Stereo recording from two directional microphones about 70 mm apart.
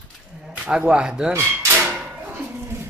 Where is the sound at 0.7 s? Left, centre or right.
Centre.